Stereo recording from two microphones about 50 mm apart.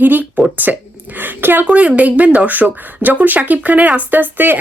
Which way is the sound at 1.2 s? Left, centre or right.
Right.